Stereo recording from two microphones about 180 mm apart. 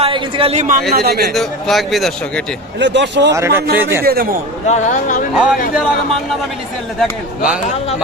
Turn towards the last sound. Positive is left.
turn(degrees=-5)  # may be behind; listen again after turning